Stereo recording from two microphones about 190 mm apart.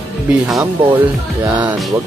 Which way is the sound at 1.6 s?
5° right (ahead or behind).